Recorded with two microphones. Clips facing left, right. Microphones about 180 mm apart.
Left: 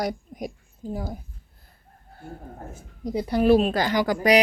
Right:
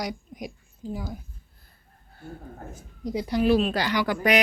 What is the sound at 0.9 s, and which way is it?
Speech, 50° left (ahead or behind).